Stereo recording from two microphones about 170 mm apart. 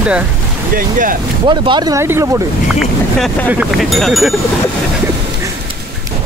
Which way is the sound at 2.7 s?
Centre (ahead or behind).